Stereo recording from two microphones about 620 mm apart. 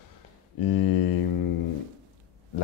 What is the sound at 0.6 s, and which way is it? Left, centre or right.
Speech, left.